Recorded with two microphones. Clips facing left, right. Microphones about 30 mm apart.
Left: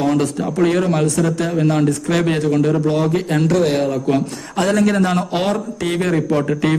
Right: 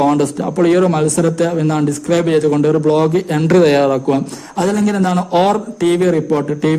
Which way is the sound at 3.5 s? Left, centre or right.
Right.